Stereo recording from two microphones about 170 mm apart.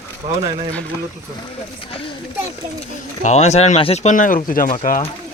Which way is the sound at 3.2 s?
40° left (ahead or behind).